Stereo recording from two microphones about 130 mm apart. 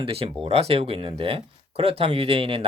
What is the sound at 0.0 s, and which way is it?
Speech, 50° right (ahead or behind).